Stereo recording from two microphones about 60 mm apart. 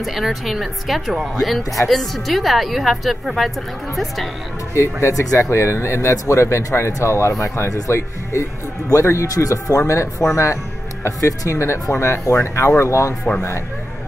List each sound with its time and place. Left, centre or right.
0.0 s a woman's voice: centre
4.7 s speech: left
5.2 s speech: left
5.5 s speech: left
6.9 s speech: left
9.3 s speech: left
11.1 s speech: left